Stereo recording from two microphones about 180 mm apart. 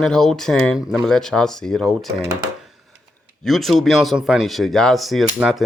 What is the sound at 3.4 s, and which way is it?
Speech, centre (ahead or behind).